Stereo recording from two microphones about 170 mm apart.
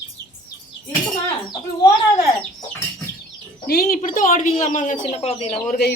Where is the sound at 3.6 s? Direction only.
65° left (ahead or behind); by 5.6 s 35° left (ahead or behind).